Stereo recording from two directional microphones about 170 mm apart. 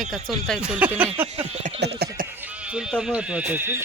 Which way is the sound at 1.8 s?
80° right.